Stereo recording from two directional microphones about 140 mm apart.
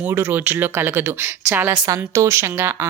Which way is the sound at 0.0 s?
15° right (ahead or behind).